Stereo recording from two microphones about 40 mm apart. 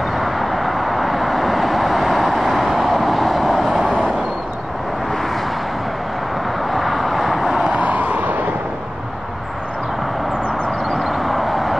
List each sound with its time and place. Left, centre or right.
0.1 s vehicle: centre
6.7 s vehicle: centre
7.6 s vehicle: right
10.9 s vehicle: centre